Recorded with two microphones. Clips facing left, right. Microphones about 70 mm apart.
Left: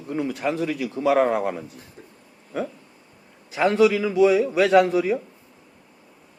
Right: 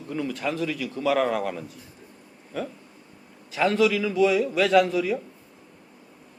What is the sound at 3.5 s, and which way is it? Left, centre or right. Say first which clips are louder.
A man's voice: left 3 dB; centre.